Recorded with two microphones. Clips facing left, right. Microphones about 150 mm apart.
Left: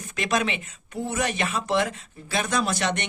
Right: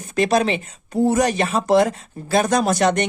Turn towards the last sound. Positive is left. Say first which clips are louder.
# right 8 dB
turn(degrees=-40)  # may be behind; listen again after turning